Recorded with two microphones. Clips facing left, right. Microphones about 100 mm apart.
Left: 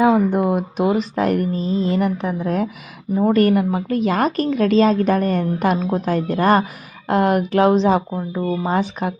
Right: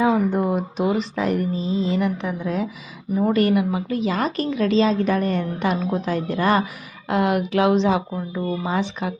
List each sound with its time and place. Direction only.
0.0 s a woman's voice: 55° left (ahead or behind)